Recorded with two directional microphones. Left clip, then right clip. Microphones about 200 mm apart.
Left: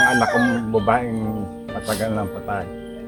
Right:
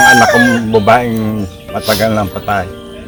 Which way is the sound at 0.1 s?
15° right (ahead or behind).